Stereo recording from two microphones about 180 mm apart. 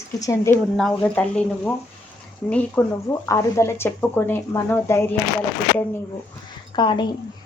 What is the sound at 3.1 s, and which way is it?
Speech, 20° left (ahead or behind).